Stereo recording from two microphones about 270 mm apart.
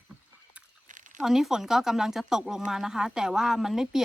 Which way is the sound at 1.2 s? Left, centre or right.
Centre.